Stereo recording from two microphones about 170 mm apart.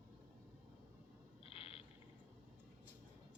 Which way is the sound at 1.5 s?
35° left (ahead or behind).